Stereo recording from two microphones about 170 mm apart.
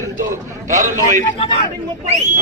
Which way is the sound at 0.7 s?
45° right (ahead or behind).